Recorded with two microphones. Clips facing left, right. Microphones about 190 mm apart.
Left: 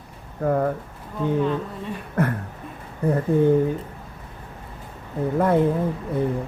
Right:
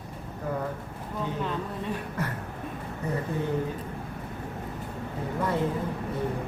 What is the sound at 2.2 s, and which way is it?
Speech, 55° left (ahead or behind).